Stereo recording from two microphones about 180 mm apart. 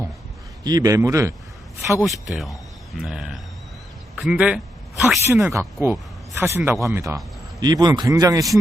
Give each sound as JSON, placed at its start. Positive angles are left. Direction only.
{"t": 0.6, "sound": "a man's voice", "side_deg": -20}
{"t": 2.2, "sound": "speech", "side_deg": 0}
{"t": 4.2, "sound": "a sound", "side_deg": -5}
{"t": 5.2, "sound": "a man's voice", "side_deg": -15}